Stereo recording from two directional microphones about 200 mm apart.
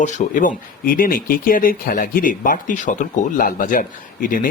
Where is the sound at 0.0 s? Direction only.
40° left (ahead or behind).